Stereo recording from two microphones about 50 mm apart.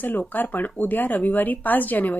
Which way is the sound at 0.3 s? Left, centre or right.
Left.